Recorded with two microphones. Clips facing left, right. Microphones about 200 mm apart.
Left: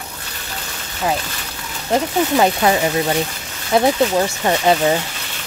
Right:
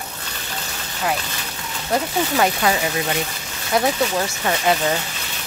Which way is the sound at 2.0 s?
25° left (ahead or behind).